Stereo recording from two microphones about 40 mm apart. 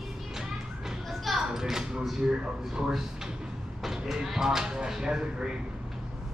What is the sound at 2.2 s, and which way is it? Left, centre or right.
Speech, centre.